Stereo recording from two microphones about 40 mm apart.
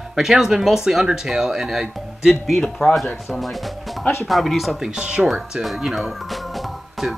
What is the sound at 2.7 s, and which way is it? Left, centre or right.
Speech, centre.